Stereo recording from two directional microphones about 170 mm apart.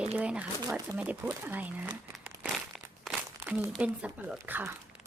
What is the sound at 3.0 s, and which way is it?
Crumpling, 5° right (ahead or behind).